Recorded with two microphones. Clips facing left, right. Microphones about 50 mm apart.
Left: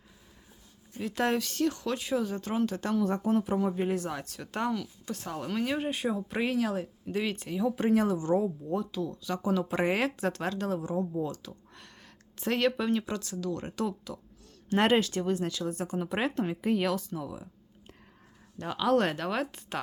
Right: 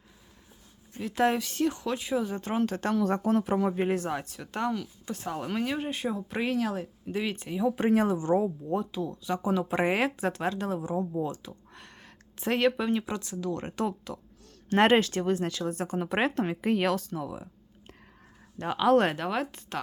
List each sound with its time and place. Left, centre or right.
0.9 s speech: centre
2.2 s speech: right
2.9 s a woman's voice: right
4.4 s speech: centre
4.8 s speech: centre
5.6 s speech: centre
7.8 s speech: right; by 11.0 s centre
11.1 s a sound: right
12.4 s speech: centre; by 17.5 s right
18.6 s speech: right
19.1 s speech: centre